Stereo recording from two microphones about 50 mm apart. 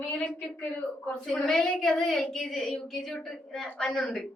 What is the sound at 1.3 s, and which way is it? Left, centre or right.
A woman's voice, centre.